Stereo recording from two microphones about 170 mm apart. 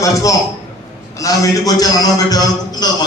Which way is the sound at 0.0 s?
20° left (ahead or behind).